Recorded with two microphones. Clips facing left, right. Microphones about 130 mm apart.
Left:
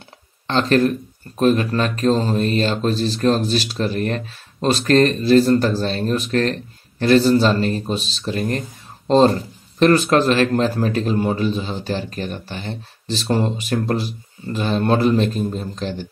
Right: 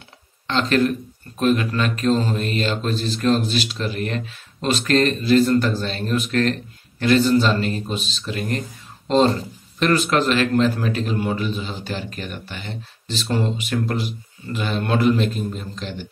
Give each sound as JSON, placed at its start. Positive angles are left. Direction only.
{"t": 0.5, "sound": "speech", "side_deg": 40}